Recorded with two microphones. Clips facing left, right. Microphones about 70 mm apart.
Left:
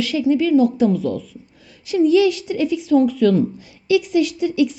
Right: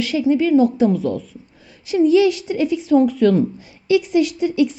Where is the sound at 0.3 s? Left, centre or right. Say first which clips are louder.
Right 1 dB; right.